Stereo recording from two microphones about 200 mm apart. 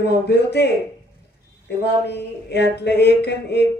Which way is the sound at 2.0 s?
55° left (ahead or behind).